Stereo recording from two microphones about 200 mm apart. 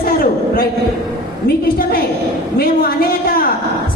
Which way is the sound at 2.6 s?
50° left (ahead or behind).